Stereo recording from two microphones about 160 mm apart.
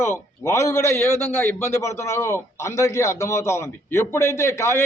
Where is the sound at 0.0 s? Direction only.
15° left (ahead or behind).